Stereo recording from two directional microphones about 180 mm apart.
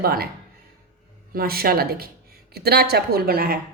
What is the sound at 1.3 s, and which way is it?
Speech, 55° right (ahead or behind).